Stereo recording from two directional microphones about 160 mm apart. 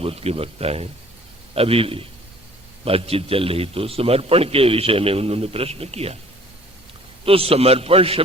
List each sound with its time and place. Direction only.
0.0 s a man's voice: 40° right (ahead or behind)
7.3 s a man's voice: 35° right (ahead or behind)